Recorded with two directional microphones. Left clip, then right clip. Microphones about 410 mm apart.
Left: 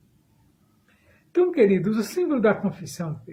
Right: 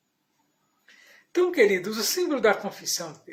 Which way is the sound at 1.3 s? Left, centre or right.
Centre.